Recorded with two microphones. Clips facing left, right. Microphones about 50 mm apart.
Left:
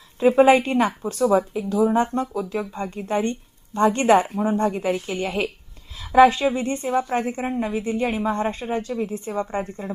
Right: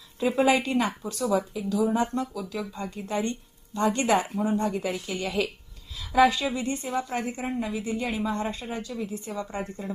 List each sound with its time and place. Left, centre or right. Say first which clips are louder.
0.2 s speech: left 8 dB; left